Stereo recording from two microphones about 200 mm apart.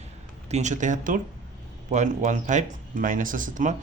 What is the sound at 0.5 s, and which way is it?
Speech, 35° right (ahead or behind).